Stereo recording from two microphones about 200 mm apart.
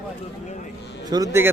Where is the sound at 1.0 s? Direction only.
20° right (ahead or behind).